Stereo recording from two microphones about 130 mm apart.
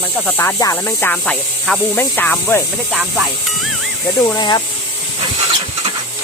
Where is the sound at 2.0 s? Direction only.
15° left (ahead or behind).